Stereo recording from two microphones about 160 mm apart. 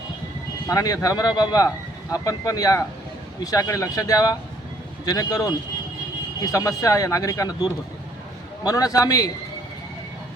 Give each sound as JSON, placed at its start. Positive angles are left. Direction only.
{"t": 0.7, "sound": "speech", "side_deg": 20}